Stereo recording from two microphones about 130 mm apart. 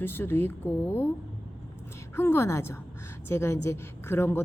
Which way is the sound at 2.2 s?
20° left (ahead or behind).